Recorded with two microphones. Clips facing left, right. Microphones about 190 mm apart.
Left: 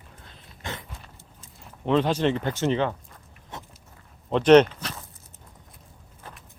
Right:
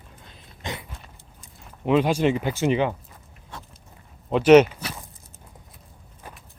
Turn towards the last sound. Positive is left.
turn(degrees=-15)  # may be behind; listen again after turning